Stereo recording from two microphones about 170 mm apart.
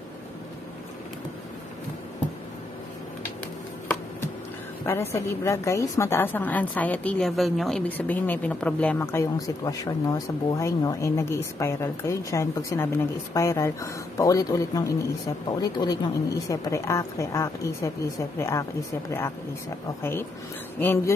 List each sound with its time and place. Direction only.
4.8 s a woman's voice: 15° left (ahead or behind)